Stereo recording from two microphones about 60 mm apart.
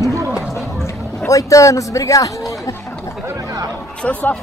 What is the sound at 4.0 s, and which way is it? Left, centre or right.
Speech, left.